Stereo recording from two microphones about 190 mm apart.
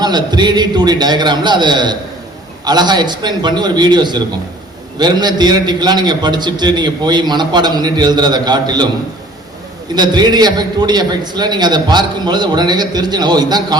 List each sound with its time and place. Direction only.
0.0 s a man's voice: 20° right (ahead or behind)
9.9 s a man's voice: 20° right (ahead or behind)